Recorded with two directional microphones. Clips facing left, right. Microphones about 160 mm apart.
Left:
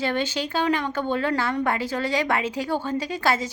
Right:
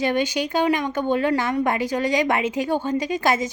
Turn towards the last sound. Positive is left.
turn(degrees=-20)  # may be behind; listen again after turning